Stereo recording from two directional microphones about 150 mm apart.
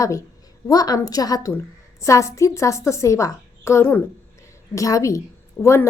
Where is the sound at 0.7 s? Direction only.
25° left (ahead or behind).